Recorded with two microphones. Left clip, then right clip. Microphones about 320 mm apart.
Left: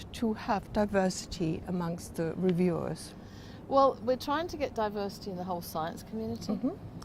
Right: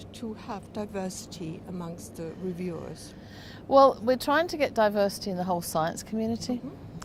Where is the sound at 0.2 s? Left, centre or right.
Left.